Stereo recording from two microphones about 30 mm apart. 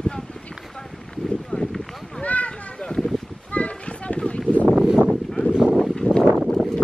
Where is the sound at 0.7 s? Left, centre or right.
Centre.